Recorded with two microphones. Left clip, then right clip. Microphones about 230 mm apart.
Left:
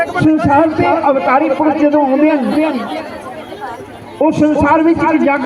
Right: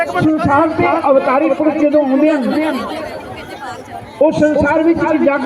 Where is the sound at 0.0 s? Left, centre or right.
Right.